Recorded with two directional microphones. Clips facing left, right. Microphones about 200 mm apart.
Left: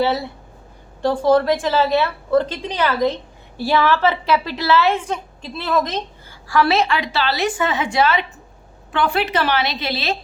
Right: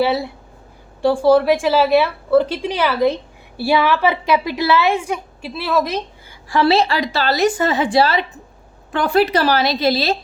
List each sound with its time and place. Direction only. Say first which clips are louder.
1.0 s a woman's voice: right 3 dB; 10° right (ahead or behind)
6.5 s a woman's voice: right 2 dB; 25° right (ahead or behind)